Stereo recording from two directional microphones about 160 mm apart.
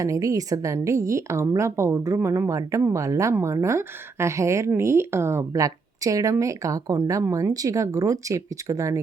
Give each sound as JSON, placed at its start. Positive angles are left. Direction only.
{"t": 0.0, "sound": "speech", "side_deg": -20}